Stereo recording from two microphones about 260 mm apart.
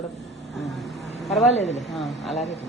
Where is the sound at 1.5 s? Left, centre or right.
Left.